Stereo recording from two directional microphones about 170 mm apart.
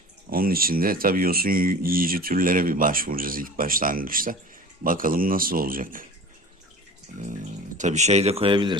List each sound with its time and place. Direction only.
0.3 s speech: 60° right (ahead or behind)
7.8 s speech: 45° right (ahead or behind)